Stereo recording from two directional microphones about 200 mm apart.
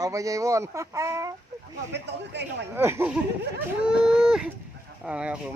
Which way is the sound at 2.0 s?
60° right (ahead or behind).